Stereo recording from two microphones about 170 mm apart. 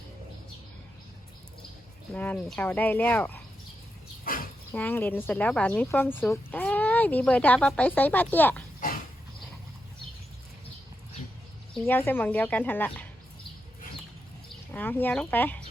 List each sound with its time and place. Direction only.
2.1 s speech: 10° left (ahead or behind)
4.2 s dog: 60° left (ahead or behind)
4.7 s speech: 10° left (ahead or behind)
11.7 s speech: 10° left (ahead or behind)
14.7 s speech: 10° left (ahead or behind)